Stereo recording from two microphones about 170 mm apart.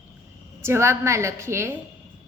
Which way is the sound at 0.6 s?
15° right (ahead or behind).